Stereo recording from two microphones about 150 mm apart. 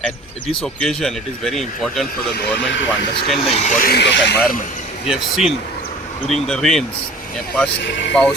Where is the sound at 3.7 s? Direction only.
70° left (ahead or behind).